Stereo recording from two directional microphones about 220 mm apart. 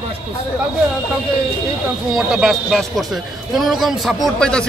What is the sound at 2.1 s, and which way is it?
Speech, centre (ahead or behind).